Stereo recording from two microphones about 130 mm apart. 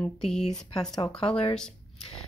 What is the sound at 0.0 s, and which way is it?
Speech, 5° left (ahead or behind).